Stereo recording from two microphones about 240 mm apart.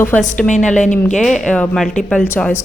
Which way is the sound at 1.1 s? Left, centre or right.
Centre.